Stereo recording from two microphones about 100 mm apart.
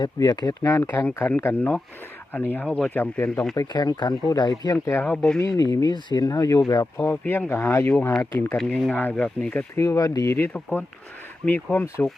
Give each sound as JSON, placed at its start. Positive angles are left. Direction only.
{"t": 0.0, "sound": "speech", "side_deg": 45}
{"t": 0.9, "sound": "speech", "side_deg": 20}
{"t": 2.6, "sound": "speech", "side_deg": 5}
{"t": 2.9, "sound": "speech", "side_deg": 20}
{"t": 3.5, "sound": "speech", "side_deg": 40}
{"t": 4.9, "sound": "speech", "side_deg": 25}
{"t": 5.1, "sound": "speech", "side_deg": 10}
{"t": 5.4, "sound": "speech", "side_deg": 35}
{"t": 6.9, "sound": "speech", "side_deg": 25}
{"t": 8.5, "sound": "speech", "side_deg": 10}
{"t": 9.7, "sound": "speech", "side_deg": 30}
{"t": 10.3, "sound": "speech", "side_deg": 20}